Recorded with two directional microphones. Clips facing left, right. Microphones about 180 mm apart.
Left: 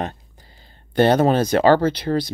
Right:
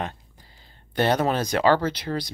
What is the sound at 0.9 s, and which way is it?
Speech, 25° left (ahead or behind).